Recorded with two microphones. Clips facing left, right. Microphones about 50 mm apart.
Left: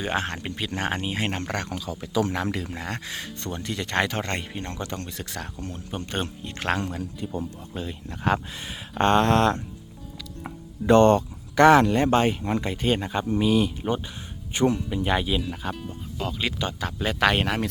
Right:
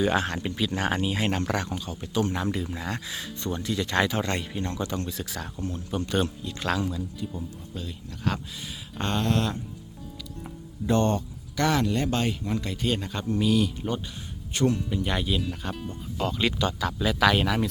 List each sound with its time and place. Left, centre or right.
0.0 s speech: left
2.3 s speech: left
2.6 s speech: left
4.8 s speech: left
7.8 s speech: left
9.0 s speech: left
10.4 s music: left
11.6 s speech: left; by 16.5 s centre
16.6 s speech: left
17.0 s speech: left